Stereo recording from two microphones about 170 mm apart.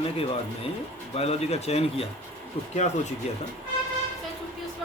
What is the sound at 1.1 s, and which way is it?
Speech, 35° left (ahead or behind).